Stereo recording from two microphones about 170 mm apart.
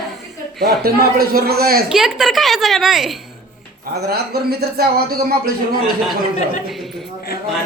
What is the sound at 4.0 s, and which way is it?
A man's voice, 70° right (ahead or behind).